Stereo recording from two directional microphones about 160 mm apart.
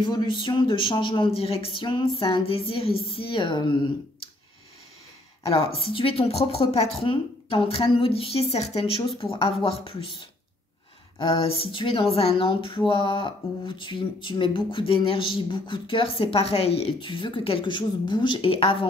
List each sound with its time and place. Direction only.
0.0 s speech: 30° left (ahead or behind)
5.5 s speech: 35° left (ahead or behind)
11.1 s speech: 35° left (ahead or behind)